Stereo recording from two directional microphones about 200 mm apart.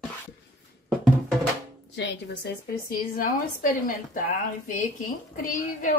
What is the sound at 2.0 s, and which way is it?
A woman's voice, 55° left (ahead or behind).